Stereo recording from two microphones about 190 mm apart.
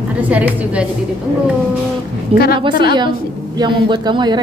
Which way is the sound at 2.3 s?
30° right (ahead or behind).